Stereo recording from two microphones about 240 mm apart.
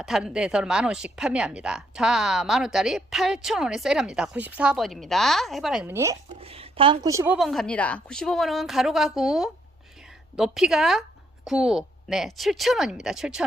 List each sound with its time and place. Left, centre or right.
0.0 s a woman's voice: centre
6.4 s a woman's voice: right
7.3 s a woman's voice: centre